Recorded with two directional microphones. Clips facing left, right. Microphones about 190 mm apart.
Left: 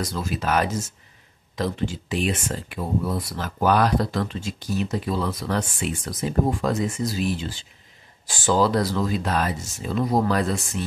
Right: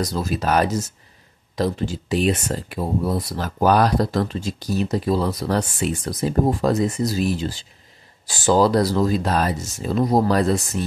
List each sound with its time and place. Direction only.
0.0 s speech: 40° right (ahead or behind)